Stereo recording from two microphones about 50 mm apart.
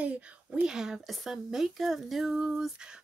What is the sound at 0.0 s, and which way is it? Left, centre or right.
Speech, right.